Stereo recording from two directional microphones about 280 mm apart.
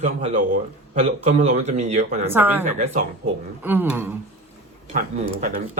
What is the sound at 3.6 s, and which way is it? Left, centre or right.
Speech, centre.